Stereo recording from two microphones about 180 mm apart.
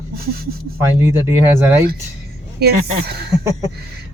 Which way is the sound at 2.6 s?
65° right (ahead or behind).